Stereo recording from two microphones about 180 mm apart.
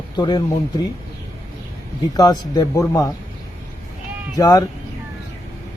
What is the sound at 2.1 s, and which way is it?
Speech, 20° left (ahead or behind).